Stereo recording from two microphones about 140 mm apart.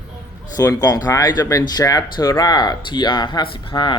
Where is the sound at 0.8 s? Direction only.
25° left (ahead or behind).